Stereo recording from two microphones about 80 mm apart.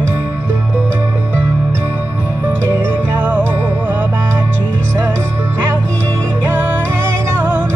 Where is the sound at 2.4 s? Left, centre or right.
Right.